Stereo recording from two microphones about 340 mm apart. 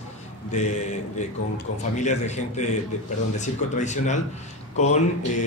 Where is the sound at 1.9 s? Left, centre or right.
Left.